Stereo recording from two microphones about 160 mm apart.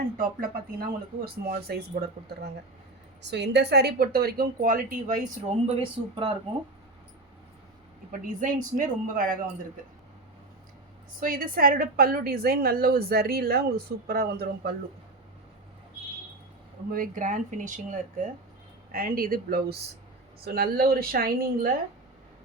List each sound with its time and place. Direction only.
0.2 s a woman's voice: 65° right (ahead or behind)
3.2 s a woman's voice: 90° right; by 5.1 s 60° right (ahead or behind)
5.5 s speech: 40° right (ahead or behind)
8.2 s speech: 55° right (ahead or behind)
11.2 s a woman's voice: 65° right (ahead or behind)
16.9 s speech: 55° right (ahead or behind)
18.9 s a woman's voice: 65° right (ahead or behind)